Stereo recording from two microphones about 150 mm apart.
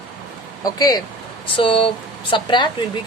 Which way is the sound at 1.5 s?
35° left (ahead or behind).